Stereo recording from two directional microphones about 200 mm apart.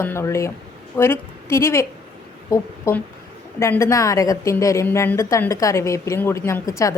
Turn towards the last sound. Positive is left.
turn(degrees=15)  # may be behind; listen again after turning